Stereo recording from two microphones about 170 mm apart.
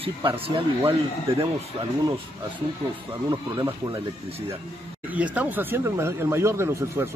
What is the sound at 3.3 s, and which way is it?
Speech, 20° right (ahead or behind).